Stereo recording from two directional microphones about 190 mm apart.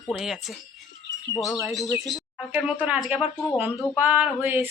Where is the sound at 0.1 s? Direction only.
Centre (ahead or behind).